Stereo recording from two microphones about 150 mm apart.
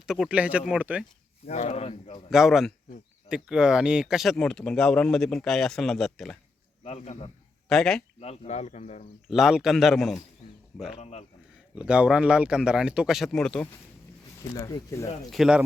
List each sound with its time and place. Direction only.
0.1 s speech: 5° right (ahead or behind)
1.5 s speech: 45° left (ahead or behind)
2.3 s speech: centre (ahead or behind)
6.8 s speech: 45° left (ahead or behind)
7.7 s speech: 5° left (ahead or behind)
8.2 s speech: 45° left (ahead or behind)
9.3 s speech: centre (ahead or behind)
10.9 s speech: 45° left (ahead or behind)
11.7 s speech: 5° right (ahead or behind)
14.6 s speech: 20° left (ahead or behind)
15.3 s speech: 5° right (ahead or behind)